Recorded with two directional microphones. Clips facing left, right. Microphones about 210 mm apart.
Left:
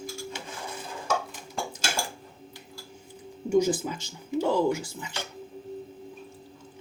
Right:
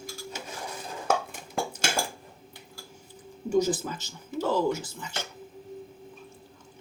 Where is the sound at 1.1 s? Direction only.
55° right (ahead or behind).